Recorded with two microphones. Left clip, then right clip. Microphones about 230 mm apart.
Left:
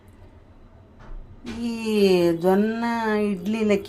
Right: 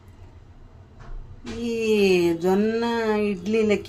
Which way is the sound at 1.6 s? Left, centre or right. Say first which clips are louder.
Right 1 dB; centre.